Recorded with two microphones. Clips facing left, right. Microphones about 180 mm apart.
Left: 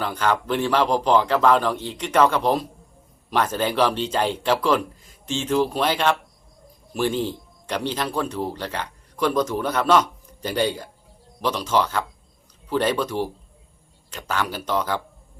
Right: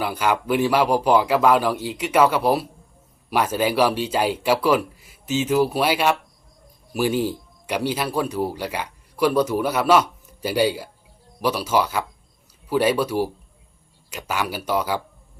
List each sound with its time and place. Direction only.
0.0 s speech: 10° right (ahead or behind)